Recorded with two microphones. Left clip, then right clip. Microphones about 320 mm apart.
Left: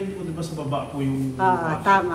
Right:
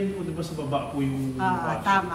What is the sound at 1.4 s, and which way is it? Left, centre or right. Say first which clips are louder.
Speech: left 5 dB; centre.